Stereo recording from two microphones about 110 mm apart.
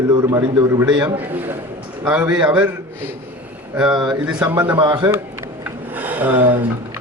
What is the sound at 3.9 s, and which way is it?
Speech, 40° right (ahead or behind).